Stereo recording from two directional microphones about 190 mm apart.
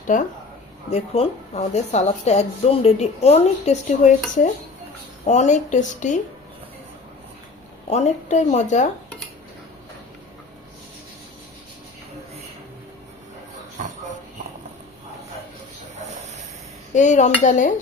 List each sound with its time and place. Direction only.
0.1 s speech: 45° left (ahead or behind)
0.9 s a woman's voice: 30° left (ahead or behind)
5.2 s a woman's voice: 40° left (ahead or behind)
7.9 s a woman's voice: 35° left (ahead or behind)
13.8 s shuffle: 40° right (ahead or behind)
16.9 s a woman's voice: 40° left (ahead or behind)